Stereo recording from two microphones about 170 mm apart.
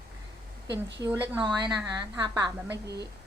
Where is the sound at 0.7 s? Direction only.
90° right.